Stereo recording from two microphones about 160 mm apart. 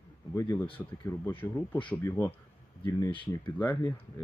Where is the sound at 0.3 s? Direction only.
15° left (ahead or behind).